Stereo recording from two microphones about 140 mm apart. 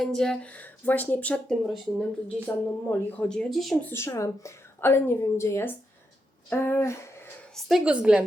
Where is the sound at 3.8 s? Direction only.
20° left (ahead or behind).